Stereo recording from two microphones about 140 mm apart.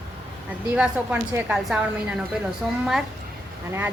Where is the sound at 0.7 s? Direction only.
10° right (ahead or behind).